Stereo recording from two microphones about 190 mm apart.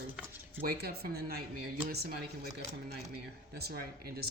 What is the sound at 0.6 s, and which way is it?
Speech, 55° right (ahead or behind).